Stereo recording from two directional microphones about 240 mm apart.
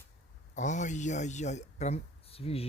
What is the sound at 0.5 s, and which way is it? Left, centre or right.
Speech, left.